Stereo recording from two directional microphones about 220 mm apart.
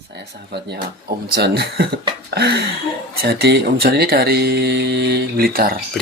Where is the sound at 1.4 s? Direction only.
50° right (ahead or behind).